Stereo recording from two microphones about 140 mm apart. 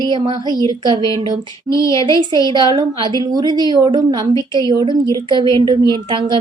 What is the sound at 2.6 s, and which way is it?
A woman's voice, 35° right (ahead or behind).